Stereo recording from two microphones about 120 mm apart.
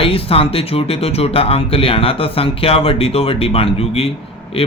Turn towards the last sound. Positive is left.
turn(degrees=50)  # may be behind; listen again after turning